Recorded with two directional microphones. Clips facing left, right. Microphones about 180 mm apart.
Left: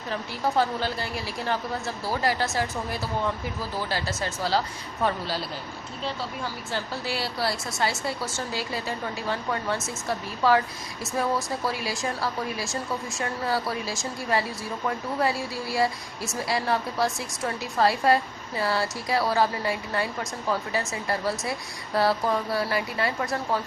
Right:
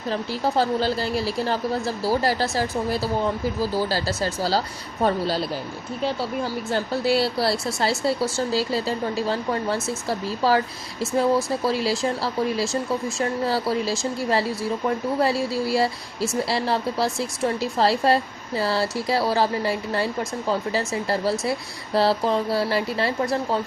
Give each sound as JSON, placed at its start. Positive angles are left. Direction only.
{"t": 0.1, "sound": "speech", "side_deg": -35}
{"t": 7.2, "sound": "speech", "side_deg": -35}